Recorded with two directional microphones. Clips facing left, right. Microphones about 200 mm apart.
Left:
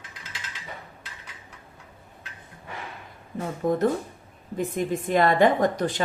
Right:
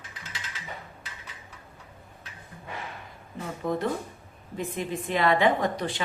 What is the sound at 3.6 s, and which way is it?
A woman's voice, 45° left (ahead or behind).